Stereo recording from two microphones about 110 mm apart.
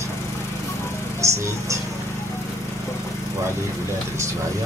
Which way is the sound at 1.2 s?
25° right (ahead or behind).